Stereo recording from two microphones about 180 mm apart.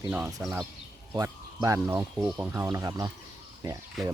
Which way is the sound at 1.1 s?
15° right (ahead or behind).